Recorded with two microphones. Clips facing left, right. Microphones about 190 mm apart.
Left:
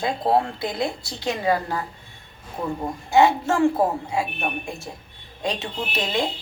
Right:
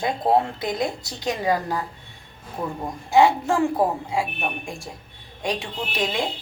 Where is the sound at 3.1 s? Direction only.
15° right (ahead or behind).